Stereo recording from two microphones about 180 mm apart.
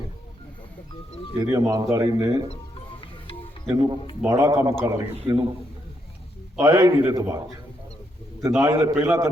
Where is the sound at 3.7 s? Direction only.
20° right (ahead or behind).